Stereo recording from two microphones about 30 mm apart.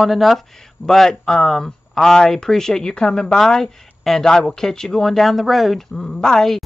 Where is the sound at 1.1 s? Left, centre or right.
Centre.